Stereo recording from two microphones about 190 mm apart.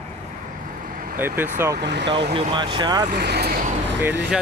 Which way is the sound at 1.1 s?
10° right (ahead or behind).